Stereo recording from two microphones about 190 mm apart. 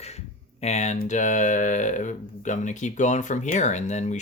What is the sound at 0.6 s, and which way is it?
Speech, 35° left (ahead or behind).